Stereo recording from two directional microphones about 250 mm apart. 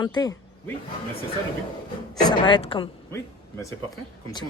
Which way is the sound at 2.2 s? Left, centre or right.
Centre.